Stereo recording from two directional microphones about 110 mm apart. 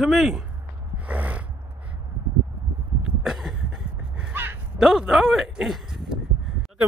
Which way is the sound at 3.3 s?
5° right (ahead or behind).